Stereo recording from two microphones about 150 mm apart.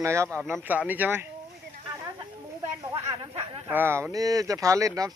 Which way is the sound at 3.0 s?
40° right (ahead or behind).